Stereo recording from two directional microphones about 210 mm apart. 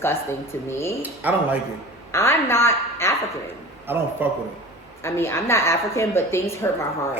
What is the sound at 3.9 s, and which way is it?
Speech, 10° right (ahead or behind).